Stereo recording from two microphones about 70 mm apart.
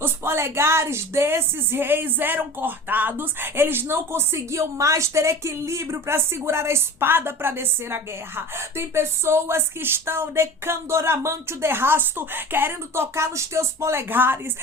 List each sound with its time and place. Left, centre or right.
0.0 s speech: right